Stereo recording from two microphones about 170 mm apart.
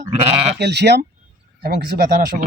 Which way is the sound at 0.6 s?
80° right.